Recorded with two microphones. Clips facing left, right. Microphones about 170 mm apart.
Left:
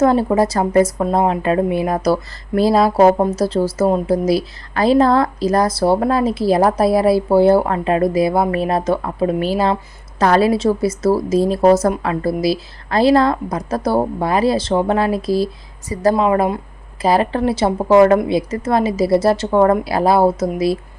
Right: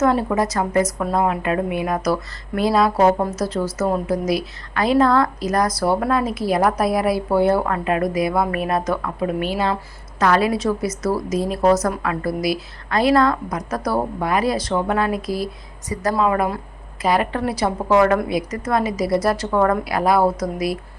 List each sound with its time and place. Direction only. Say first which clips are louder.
0.0 s a woman's voice: left 4 dB; 30° left (ahead or behind)